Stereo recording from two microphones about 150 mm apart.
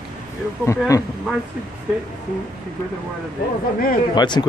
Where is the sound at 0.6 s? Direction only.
20° left (ahead or behind).